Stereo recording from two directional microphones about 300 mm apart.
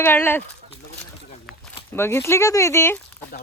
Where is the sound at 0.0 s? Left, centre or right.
Centre.